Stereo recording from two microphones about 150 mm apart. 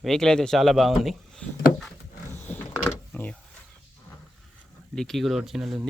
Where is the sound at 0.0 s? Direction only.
5° left (ahead or behind).